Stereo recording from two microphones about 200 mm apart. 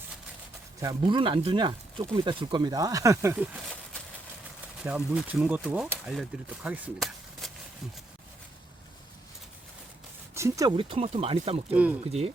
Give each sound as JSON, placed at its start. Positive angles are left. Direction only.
{"t": 0.8, "sound": "speech", "side_deg": -20}
{"t": 4.8, "sound": "speech", "side_deg": -5}
{"t": 10.3, "sound": "speech", "side_deg": -15}
{"t": 11.7, "sound": "speech", "side_deg": -5}